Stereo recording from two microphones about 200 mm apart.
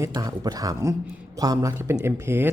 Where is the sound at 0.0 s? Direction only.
15° right (ahead or behind).